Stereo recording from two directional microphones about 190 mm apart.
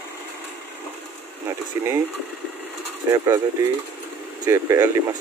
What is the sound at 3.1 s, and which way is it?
Speech, 20° right (ahead or behind).